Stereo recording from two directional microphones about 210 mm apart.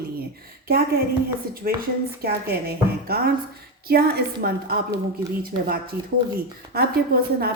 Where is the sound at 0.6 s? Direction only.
45° right (ahead or behind).